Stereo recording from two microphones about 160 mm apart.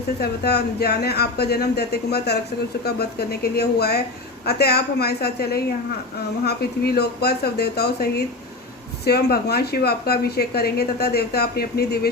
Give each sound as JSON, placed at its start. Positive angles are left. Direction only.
{"t": 0.2, "sound": "a woman's voice", "side_deg": 85}